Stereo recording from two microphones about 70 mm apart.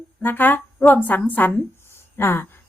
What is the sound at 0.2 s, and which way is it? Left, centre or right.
A woman's voice, left.